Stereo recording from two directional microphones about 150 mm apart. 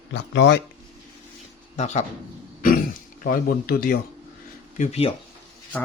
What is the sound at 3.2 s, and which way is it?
Speech, 70° left (ahead or behind).